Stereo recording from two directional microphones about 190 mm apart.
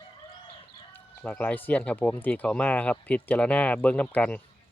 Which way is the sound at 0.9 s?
10° left (ahead or behind).